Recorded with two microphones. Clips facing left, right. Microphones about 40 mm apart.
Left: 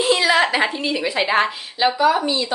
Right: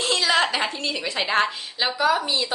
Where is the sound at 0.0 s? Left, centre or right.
Centre.